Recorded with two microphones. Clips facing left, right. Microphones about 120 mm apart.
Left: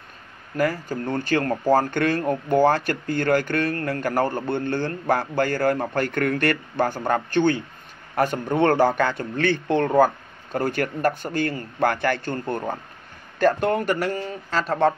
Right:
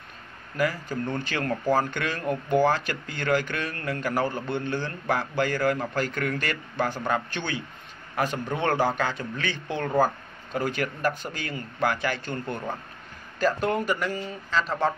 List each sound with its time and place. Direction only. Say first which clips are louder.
0.6 s a man's voice: left 3 dB; 45° left (ahead or behind)
13.4 s speech: left 5 dB; 55° left (ahead or behind)